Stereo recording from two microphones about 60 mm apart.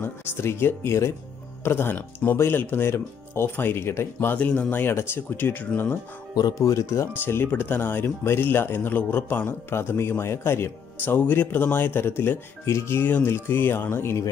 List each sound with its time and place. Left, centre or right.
0.0 s speech: left
1.6 s speech: left
4.4 s speech: left
4.7 s speech: left
6.3 s speech: left
7.2 s speech: left
13.3 s speech: left